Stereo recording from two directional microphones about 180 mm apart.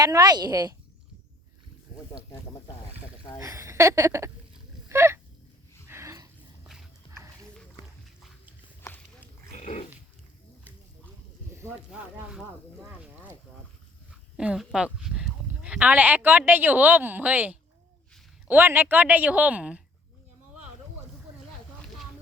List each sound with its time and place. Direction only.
0.0 s a woman's voice: 20° right (ahead or behind)
2.0 s speech: 20° left (ahead or behind)
3.4 s a sound: 20° right (ahead or behind)
8.8 s a sound: 10° left (ahead or behind)
9.6 s dog: 40° left (ahead or behind)
11.9 s speech: 5° right (ahead or behind)
14.3 s speech: 5° right (ahead or behind)